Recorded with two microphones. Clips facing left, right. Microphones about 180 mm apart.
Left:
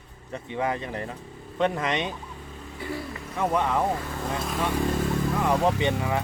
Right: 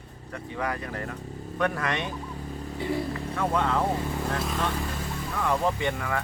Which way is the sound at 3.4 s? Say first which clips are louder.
Left 2 dB; 15° left (ahead or behind).